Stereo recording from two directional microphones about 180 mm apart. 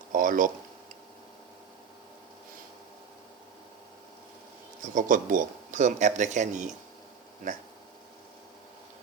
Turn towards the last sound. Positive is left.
turn(degrees=-45)  # may be behind; listen again after turning